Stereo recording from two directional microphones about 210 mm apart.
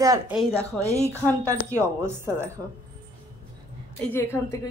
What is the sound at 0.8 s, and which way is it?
Speech, 15° right (ahead or behind).